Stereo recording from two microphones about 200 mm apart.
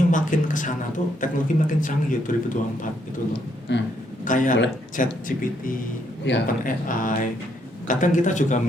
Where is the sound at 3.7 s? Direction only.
65° left (ahead or behind).